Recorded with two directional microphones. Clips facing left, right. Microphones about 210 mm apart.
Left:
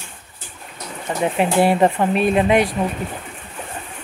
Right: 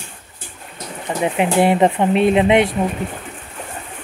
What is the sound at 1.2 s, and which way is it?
Speech, 15° right (ahead or behind).